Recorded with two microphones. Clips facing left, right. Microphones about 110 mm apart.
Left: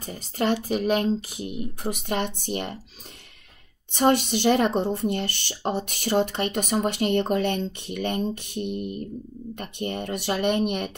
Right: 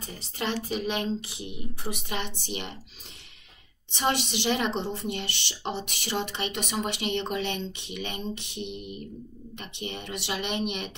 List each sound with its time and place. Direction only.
0.0 s speech: 45° left (ahead or behind)
3.9 s speech: 45° left (ahead or behind)